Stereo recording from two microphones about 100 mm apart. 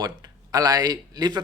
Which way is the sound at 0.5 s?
40° right (ahead or behind).